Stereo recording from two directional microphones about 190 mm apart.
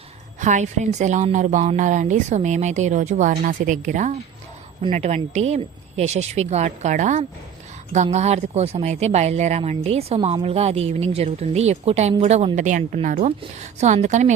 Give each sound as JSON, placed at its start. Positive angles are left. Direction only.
{"t": 0.3, "sound": "speech", "side_deg": -40}